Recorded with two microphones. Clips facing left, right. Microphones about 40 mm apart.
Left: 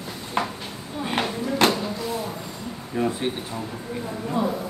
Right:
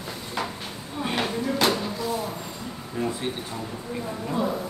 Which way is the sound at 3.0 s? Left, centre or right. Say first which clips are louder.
Left 4 dB; left.